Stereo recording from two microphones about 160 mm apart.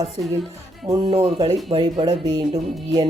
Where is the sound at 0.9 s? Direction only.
25° right (ahead or behind).